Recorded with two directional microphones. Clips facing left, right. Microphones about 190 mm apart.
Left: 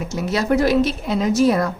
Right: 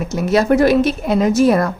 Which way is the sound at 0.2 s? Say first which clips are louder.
Right 5 dB; 55° right (ahead or behind).